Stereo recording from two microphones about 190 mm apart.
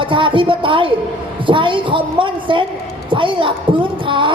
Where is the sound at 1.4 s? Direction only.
25° right (ahead or behind).